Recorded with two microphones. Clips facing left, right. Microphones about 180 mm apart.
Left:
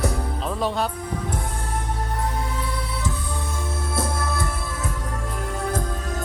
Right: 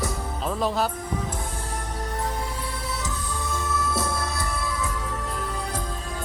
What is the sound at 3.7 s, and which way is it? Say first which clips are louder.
Music: even; 50° left (ahead or behind).